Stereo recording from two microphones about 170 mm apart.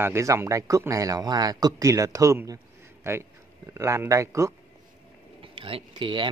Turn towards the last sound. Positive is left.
turn(degrees=-30)  # may be behind; listen again after turning